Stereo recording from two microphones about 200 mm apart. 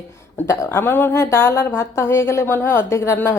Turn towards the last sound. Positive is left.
turn(degrees=10)  # may be behind; listen again after turning